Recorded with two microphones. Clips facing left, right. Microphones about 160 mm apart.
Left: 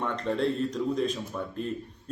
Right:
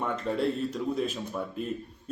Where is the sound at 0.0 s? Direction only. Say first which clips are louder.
Even; 5° right (ahead or behind).